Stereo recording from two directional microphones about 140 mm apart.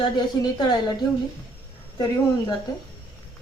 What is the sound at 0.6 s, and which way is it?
Speech, 30° left (ahead or behind).